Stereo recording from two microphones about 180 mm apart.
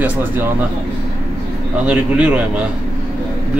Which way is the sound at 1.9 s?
5° right (ahead or behind).